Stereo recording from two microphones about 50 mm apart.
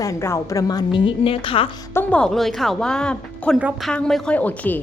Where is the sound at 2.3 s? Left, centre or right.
Centre.